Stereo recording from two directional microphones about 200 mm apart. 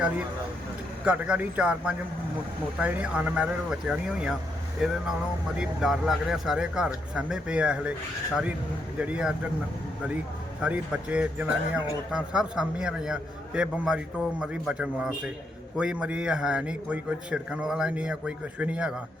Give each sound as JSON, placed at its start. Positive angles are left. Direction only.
{"t": 1.0, "sound": "a man's voice", "side_deg": -5}
{"t": 9.0, "sound": "a man's voice", "side_deg": -5}
{"t": 10.6, "sound": "a man's voice", "side_deg": -5}